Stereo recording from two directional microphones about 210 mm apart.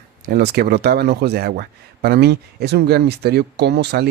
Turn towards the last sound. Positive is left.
turn(degrees=-55)  # may be behind; listen again after turning